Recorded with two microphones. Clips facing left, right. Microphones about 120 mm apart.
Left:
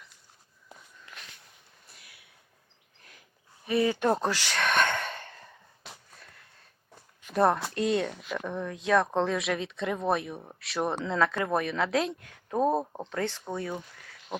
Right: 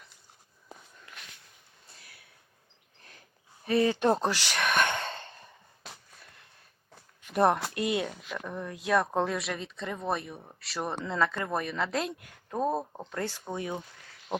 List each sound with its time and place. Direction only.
1.9 s a sound: 25° right (ahead or behind)
3.7 s speech: 30° right (ahead or behind); by 4.9 s 10° right (ahead or behind)
4.9 s sigh: 25° right (ahead or behind)
7.3 s speech: 15° right (ahead or behind)
13.5 s speech: 15° right (ahead or behind)